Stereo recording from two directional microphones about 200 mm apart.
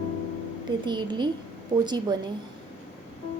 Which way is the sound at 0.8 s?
25° right (ahead or behind).